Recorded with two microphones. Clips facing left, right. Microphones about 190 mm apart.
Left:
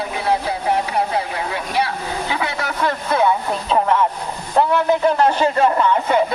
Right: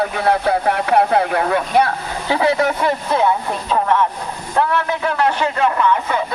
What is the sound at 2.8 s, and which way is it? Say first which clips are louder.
Speech: right 2 dB; 15° right (ahead or behind).